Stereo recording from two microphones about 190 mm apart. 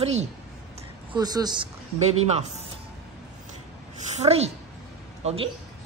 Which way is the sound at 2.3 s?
35° right (ahead or behind).